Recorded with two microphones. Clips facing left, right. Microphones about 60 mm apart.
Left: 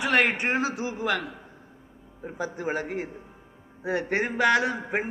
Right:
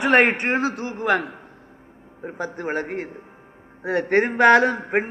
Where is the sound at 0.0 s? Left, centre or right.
Right.